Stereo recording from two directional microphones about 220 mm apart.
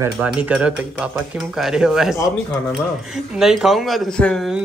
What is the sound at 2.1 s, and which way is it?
Speech, 15° left (ahead or behind).